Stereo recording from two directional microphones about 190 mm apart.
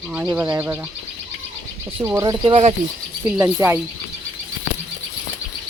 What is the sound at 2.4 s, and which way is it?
Speech, 25° right (ahead or behind).